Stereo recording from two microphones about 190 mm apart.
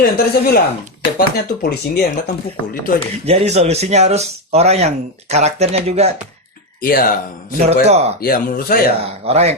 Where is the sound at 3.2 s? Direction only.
35° right (ahead or behind).